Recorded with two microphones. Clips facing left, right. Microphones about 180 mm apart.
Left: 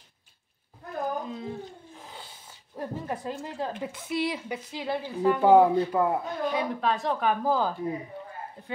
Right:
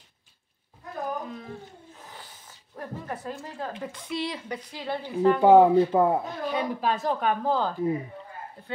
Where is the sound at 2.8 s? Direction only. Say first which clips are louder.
Left 2 dB; 20° left (ahead or behind).